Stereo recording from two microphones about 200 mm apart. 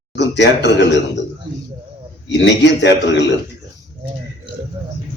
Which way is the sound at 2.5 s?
60° left (ahead or behind).